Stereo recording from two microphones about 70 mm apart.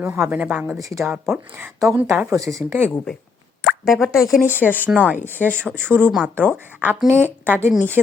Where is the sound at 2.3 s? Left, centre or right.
Right.